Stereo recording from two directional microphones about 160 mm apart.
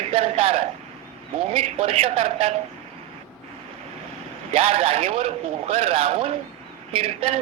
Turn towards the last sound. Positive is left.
turn(degrees=-35)  # may be behind; listen again after turning